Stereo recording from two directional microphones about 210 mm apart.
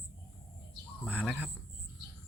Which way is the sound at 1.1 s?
5° right (ahead or behind).